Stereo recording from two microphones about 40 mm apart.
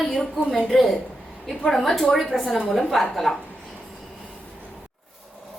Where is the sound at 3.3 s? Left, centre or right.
Left.